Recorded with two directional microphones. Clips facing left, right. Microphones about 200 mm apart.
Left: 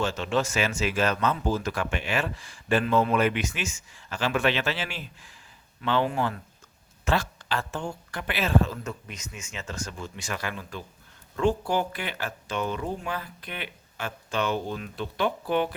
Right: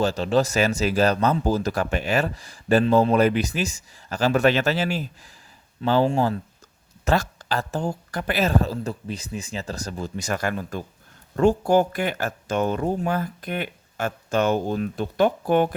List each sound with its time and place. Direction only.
0.0 s speech: 35° right (ahead or behind)